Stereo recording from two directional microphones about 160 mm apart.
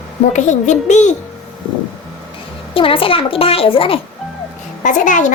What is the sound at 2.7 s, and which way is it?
A child's voice, 35° left (ahead or behind).